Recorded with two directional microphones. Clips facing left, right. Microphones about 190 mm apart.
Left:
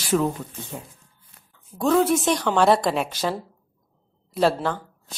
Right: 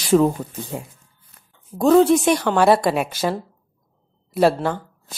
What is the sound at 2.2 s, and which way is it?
A woman's voice, 10° right (ahead or behind).